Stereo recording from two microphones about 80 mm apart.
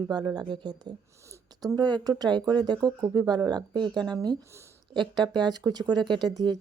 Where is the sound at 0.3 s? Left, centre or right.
Right.